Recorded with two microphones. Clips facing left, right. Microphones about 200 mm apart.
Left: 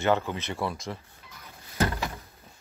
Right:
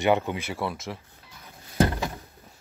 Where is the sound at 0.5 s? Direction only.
Centre (ahead or behind).